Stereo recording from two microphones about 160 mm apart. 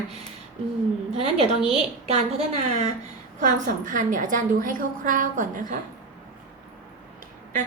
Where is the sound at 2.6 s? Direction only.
40° right (ahead or behind).